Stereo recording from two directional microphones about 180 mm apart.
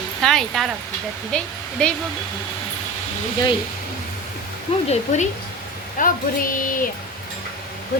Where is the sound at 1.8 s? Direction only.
5° left (ahead or behind).